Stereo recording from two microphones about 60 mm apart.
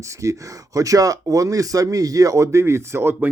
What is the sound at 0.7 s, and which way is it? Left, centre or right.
Speech, right.